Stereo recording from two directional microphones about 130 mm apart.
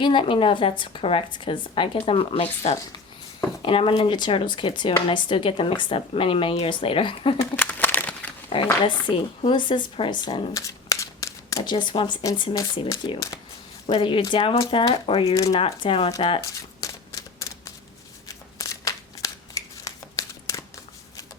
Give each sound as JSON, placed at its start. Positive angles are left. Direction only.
{"t": 0.0, "sound": "speech", "side_deg": 40}
{"t": 7.5, "sound": "crumpling", "side_deg": 15}
{"t": 8.5, "sound": "speech", "side_deg": 40}
{"t": 10.5, "sound": "shuffling cards", "side_deg": 25}
{"t": 11.6, "sound": "speech", "side_deg": 35}
{"t": 13.9, "sound": "speech", "side_deg": 40}
{"t": 16.4, "sound": "typewriter", "side_deg": 25}
{"t": 18.3, "sound": "shuffling cards", "side_deg": 25}